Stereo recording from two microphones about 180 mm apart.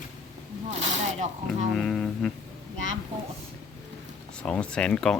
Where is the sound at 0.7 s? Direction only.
40° right (ahead or behind).